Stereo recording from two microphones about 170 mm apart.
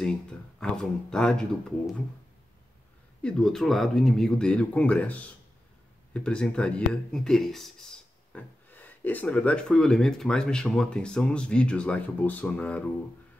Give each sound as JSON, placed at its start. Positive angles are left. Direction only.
{"t": 0.6, "sound": "speech", "side_deg": 5}
{"t": 3.2, "sound": "speech", "side_deg": 5}